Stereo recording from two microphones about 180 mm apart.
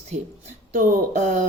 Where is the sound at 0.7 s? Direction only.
45° right (ahead or behind).